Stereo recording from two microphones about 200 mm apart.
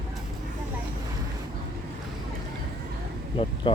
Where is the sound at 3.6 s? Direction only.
25° left (ahead or behind).